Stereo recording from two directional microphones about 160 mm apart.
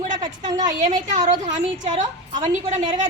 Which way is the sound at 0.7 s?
50° right (ahead or behind).